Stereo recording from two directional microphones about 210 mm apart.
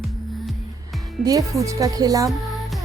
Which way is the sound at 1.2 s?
15° right (ahead or behind).